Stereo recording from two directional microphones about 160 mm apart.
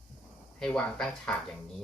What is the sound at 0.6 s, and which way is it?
Speech, 5° left (ahead or behind).